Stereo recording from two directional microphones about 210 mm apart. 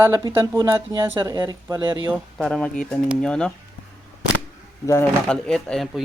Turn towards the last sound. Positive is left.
turn(degrees=0)  # may be behind; listen again after turning